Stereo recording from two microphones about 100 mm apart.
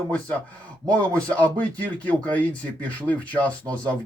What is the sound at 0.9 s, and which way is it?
Speech, 15° left (ahead or behind).